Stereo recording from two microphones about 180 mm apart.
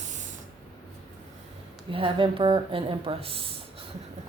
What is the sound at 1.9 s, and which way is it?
A woman's voice, 30° right (ahead or behind).